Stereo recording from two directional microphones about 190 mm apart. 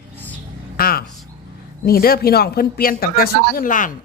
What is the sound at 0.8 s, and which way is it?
Speech, 50° left (ahead or behind).